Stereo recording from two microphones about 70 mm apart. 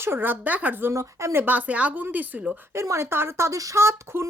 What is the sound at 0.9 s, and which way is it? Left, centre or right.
Speech, right.